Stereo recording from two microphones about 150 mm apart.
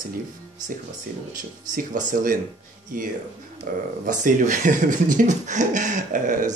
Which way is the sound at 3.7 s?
75° right (ahead or behind).